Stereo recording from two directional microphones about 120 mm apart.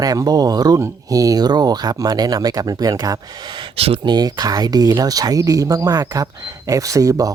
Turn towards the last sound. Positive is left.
turn(degrees=-30)  # may be behind; listen again after turning